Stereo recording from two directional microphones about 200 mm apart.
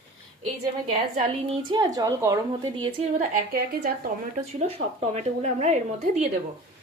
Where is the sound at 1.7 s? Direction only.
20° right (ahead or behind).